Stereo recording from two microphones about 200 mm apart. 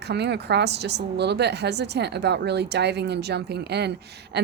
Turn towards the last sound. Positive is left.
turn(degrees=-55)  # may be behind; listen again after turning